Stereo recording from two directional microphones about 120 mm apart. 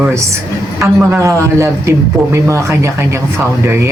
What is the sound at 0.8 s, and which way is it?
Speech, 25° right (ahead or behind).